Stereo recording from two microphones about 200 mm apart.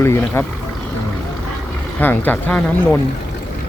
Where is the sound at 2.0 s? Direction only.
10° left (ahead or behind).